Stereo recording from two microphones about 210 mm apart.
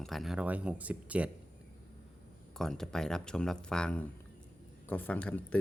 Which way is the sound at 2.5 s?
Centre (ahead or behind).